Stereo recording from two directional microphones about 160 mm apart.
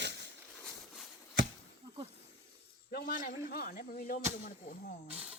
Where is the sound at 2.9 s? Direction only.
70° left (ahead or behind).